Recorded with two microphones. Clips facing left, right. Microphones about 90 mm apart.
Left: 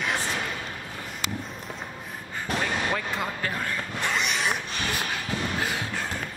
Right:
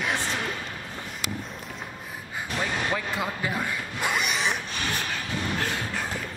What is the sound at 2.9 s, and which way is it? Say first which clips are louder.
Vehicle: even; 5° right (ahead or behind).